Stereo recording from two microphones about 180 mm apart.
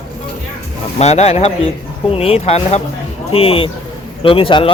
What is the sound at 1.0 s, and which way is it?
Speech, 35° left (ahead or behind).